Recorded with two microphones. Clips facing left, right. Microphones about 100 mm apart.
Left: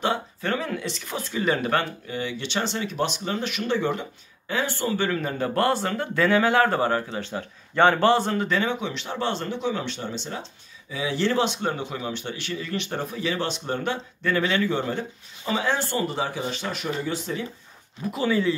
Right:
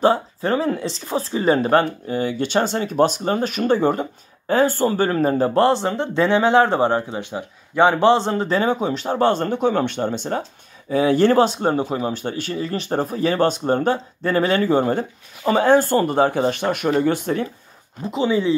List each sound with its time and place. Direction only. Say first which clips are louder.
0.0 s speech: right 8 dB; 35° right (ahead or behind); by 17.5 s 55° right (ahead or behind)
18.0 s speech: right 4 dB; 20° right (ahead or behind)